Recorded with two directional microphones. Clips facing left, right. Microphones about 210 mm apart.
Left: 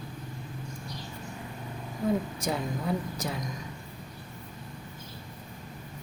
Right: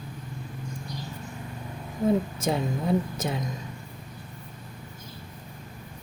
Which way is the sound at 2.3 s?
25° right (ahead or behind).